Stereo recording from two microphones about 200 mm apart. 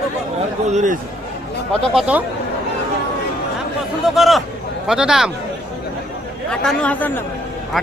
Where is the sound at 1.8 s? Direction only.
Centre (ahead or behind).